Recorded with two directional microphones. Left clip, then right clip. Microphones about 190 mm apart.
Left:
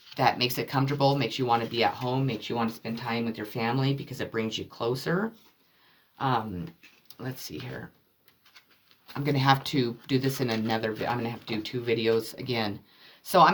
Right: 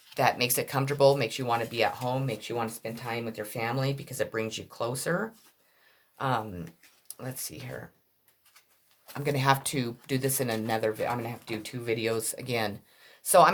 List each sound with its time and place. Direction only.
0.1 s speech: 50° right (ahead or behind)
6.1 s speech: 50° right (ahead or behind)
9.1 s speech: 45° right (ahead or behind)